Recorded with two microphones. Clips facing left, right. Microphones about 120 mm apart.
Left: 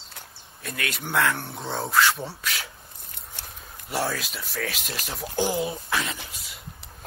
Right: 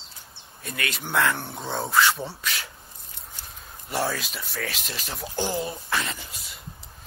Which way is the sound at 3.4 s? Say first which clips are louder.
Left 4 dB; 70° left (ahead or behind).